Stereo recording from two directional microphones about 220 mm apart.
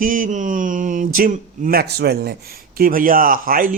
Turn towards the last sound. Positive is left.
turn(degrees=-40)  # may be behind; listen again after turning